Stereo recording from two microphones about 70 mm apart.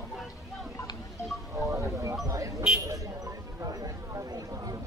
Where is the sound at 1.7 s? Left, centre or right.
Right.